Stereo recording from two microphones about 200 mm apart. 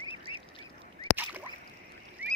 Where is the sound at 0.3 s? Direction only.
90° left.